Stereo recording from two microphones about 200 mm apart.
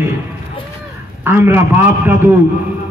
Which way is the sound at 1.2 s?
10° right (ahead or behind).